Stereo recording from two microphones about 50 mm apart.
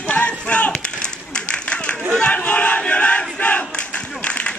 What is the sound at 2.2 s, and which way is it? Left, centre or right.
Battle cry, left.